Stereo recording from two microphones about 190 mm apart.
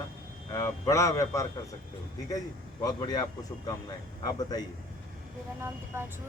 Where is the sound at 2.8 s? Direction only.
20° left (ahead or behind).